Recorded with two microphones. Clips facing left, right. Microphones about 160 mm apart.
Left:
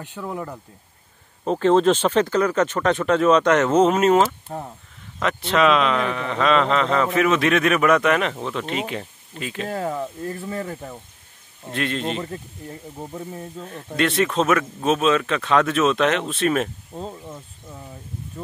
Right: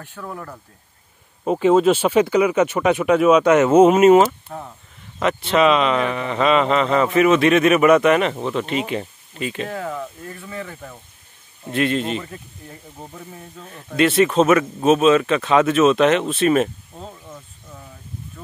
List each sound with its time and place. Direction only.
0.0 s speech: 15° left (ahead or behind)
1.4 s speech: 10° right (ahead or behind)
9.7 s speech: 35° left (ahead or behind)
11.7 s speech: 5° right (ahead or behind)
13.9 s speech: 5° right (ahead or behind)